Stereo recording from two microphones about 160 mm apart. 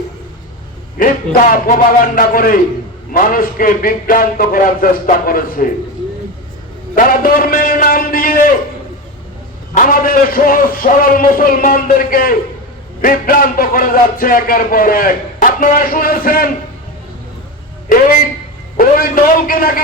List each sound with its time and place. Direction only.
0.9 s a man's voice: 60° left (ahead or behind)
6.9 s a sound: 60° left (ahead or behind)
9.7 s a man's voice: 60° left (ahead or behind)
17.8 s a man's voice: 60° left (ahead or behind)